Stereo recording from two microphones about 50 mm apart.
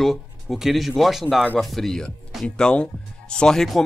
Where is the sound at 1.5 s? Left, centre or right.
Centre.